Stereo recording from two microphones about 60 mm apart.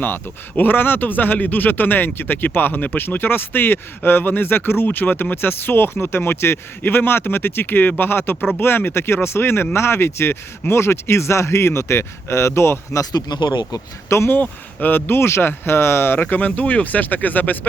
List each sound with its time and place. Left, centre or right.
0.0 s speech: left
14.1 s speech: left
14.4 s speech: left
16.2 s speech: left